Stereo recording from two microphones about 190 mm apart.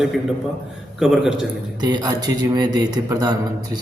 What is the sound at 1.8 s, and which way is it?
Speech, 20° right (ahead or behind).